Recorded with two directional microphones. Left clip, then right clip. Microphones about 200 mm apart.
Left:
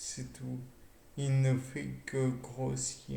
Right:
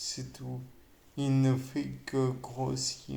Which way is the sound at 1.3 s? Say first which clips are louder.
Right 5 dB; 45° right (ahead or behind).